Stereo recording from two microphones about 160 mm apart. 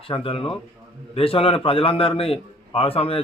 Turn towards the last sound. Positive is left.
turn(degrees=35)  # may be behind; listen again after turning